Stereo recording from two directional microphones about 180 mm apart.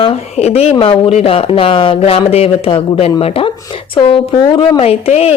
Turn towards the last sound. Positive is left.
turn(degrees=35)  # may be behind; listen again after turning